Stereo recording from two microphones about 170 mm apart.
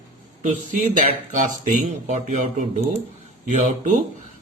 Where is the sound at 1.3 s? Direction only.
45° right (ahead or behind).